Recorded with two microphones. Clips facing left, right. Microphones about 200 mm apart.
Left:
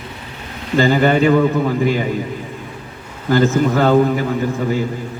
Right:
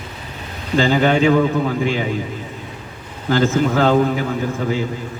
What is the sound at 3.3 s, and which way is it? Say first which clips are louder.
A man's voice: left 2 dB; 5° left (ahead or behind).